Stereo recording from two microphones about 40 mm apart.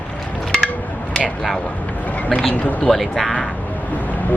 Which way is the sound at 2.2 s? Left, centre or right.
Centre.